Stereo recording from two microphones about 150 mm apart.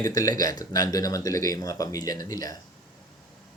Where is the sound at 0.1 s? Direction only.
25° left (ahead or behind).